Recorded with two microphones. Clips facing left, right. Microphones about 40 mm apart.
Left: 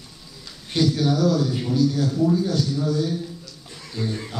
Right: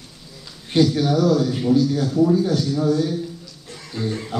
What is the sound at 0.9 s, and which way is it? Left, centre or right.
A man's voice, centre.